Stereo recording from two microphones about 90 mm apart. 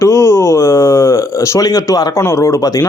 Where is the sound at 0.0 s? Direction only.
30° left (ahead or behind).